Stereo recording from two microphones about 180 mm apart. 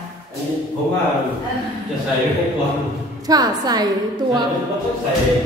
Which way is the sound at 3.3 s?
20° right (ahead or behind).